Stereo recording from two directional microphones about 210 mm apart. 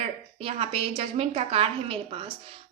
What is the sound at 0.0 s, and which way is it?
A woman's voice, 30° right (ahead or behind).